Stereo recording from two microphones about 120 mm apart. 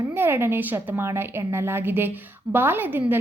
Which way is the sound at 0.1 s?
20° right (ahead or behind).